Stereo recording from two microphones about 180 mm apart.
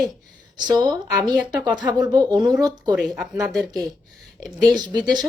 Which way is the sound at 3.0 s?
Centre (ahead or behind).